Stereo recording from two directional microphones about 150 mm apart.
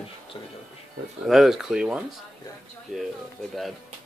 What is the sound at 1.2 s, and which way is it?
Speech, centre (ahead or behind).